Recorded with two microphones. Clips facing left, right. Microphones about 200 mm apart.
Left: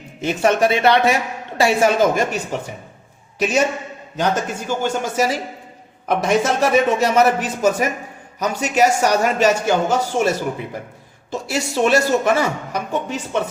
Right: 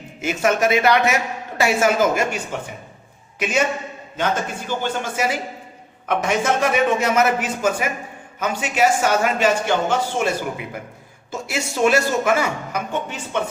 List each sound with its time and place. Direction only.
0.2 s a man's voice: 35° left (ahead or behind)